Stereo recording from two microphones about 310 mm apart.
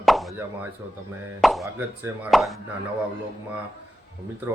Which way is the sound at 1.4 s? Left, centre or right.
Centre.